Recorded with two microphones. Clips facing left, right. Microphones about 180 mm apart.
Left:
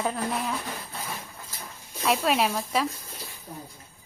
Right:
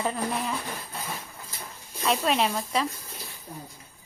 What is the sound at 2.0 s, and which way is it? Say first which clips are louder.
Speech: left 1 dB; 5° left (ahead or behind).